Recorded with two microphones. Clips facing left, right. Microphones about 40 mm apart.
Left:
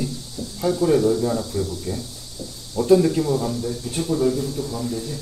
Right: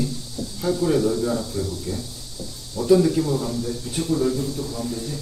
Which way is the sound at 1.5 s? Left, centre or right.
Left.